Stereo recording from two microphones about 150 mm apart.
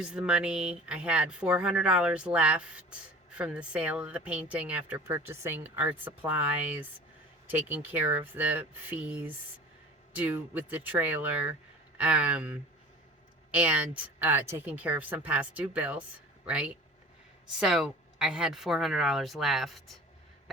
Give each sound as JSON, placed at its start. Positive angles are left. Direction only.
{"t": 0.0, "sound": "speech", "side_deg": -5}